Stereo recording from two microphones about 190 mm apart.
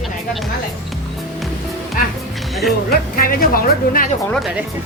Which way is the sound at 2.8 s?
50° left (ahead or behind).